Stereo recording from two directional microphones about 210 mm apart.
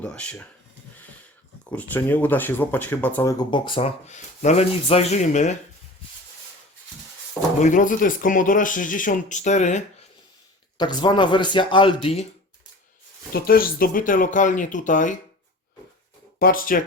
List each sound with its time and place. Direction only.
0.0 s speech: 5° left (ahead or behind)
1.7 s speech: 5° left (ahead or behind); by 5.5 s 35° left (ahead or behind)
7.6 s speech: 40° left (ahead or behind)
10.8 s speech: 20° left (ahead or behind)
13.3 s speech: 45° left (ahead or behind)
16.4 s speech: 40° left (ahead or behind)